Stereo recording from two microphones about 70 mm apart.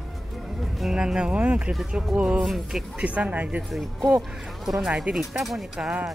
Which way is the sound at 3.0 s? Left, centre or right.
Centre.